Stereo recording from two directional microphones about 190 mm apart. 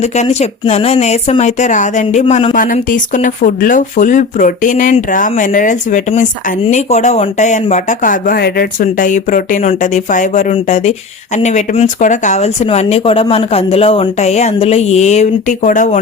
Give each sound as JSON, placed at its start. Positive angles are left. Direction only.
{"t": 0.0, "sound": "speech", "side_deg": 35}
{"t": 2.2, "sound": "speech", "side_deg": 25}
{"t": 2.6, "sound": "speech", "side_deg": 45}